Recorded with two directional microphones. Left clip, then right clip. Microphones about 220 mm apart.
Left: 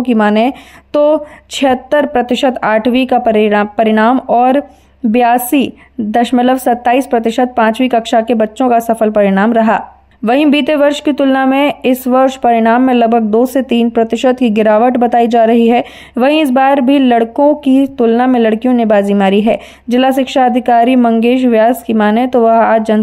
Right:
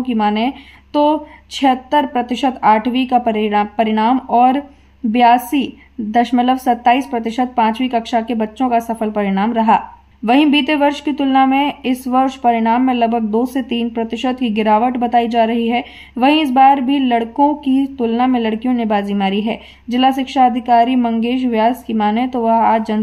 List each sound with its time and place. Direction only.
0.0 s speech: 25° left (ahead or behind)